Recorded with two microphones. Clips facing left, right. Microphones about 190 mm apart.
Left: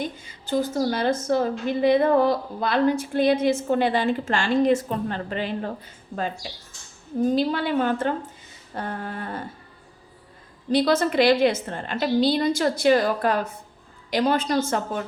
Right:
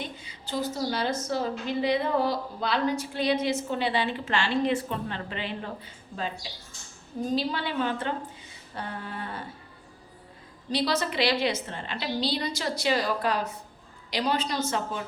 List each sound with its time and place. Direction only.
0.0 s a woman's voice: 50° left (ahead or behind)
10.7 s a woman's voice: 50° left (ahead or behind)